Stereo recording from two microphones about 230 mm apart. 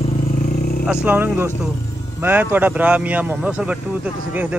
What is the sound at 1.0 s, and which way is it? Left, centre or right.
A man's voice, centre.